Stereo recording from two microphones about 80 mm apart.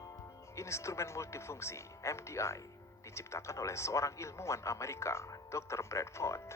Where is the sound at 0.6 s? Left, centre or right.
Left.